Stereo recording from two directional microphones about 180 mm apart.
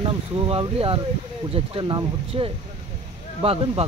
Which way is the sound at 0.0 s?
30° right (ahead or behind).